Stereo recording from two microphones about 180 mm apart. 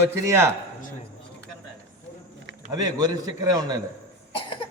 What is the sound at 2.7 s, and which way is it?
A man's voice, 20° right (ahead or behind).